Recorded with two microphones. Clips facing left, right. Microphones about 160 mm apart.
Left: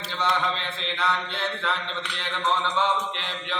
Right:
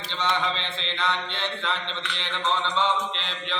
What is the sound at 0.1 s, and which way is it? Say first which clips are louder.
Mantra: left 1 dB; 10° left (ahead or behind).